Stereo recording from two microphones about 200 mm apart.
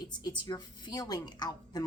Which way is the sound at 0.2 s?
20° left (ahead or behind).